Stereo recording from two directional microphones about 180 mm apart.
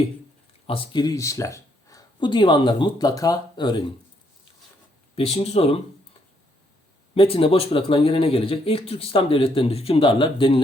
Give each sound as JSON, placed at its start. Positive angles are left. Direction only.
{"t": 0.7, "sound": "speech", "side_deg": 25}
{"t": 5.1, "sound": "speech", "side_deg": 35}
{"t": 7.1, "sound": "speech", "side_deg": 30}